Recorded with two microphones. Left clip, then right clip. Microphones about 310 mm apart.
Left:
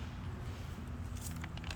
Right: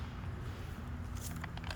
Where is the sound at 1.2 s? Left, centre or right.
Centre.